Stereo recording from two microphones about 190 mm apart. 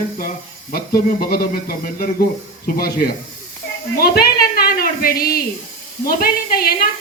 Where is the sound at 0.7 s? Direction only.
50° left (ahead or behind).